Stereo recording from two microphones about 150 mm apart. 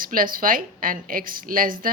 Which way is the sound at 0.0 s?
70° right (ahead or behind).